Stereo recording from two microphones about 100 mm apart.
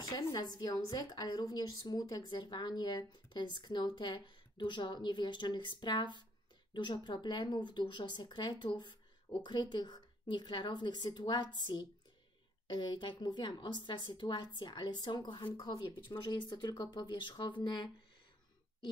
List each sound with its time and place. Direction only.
0.0 s a woman's voice: 40° left (ahead or behind)